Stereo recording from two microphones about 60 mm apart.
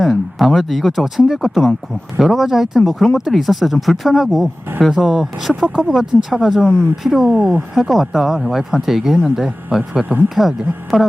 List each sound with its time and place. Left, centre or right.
0.0 s speech: centre
7.3 s speech: right
7.8 s speech: centre